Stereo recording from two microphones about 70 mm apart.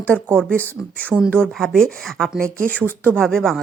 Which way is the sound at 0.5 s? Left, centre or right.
Left.